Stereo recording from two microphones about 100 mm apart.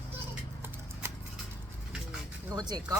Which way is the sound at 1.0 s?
25° right (ahead or behind).